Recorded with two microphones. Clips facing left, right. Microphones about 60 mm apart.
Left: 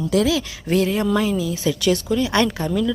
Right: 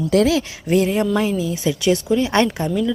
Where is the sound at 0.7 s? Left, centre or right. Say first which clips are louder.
Right 2 dB; right.